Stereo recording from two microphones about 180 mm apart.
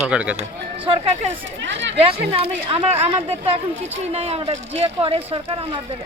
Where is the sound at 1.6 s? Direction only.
80° right.